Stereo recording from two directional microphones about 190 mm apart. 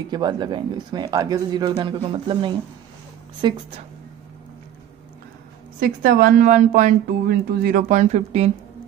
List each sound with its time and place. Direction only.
0.1 s speech: 25° right (ahead or behind)
5.8 s a woman's voice: 50° right (ahead or behind)